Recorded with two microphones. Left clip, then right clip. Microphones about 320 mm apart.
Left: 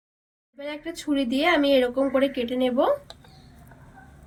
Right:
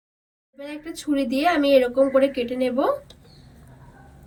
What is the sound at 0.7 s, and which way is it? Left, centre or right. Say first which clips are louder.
Speech: right 2 dB; centre.